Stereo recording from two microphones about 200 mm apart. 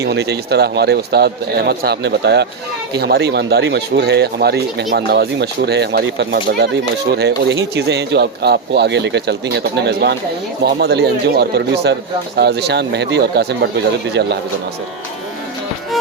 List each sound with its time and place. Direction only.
0.0 s speech: 55° right (ahead or behind)